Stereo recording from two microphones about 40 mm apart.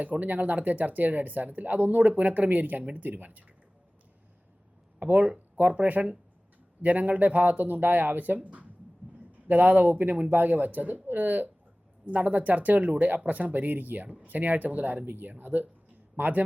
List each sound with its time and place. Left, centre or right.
0.0 s speech: right
5.0 s speech: right
8.4 s speech: right
9.5 s speech: right
12.0 s speech: right
15.0 s speech: right